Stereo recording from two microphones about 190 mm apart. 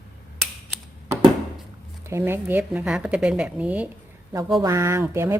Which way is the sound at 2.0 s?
15° right (ahead or behind).